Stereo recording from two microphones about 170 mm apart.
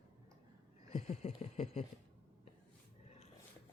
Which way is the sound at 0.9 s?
40° left (ahead or behind).